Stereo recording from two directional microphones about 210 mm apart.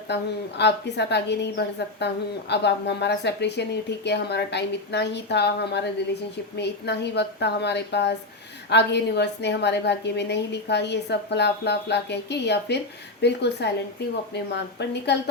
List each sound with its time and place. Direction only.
0.1 s a woman's voice: 55° left (ahead or behind)